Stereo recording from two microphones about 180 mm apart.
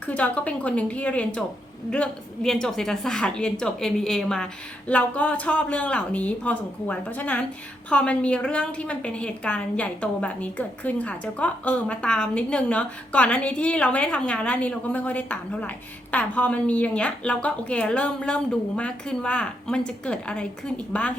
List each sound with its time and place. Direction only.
0.0 s a woman's voice: 10° left (ahead or behind)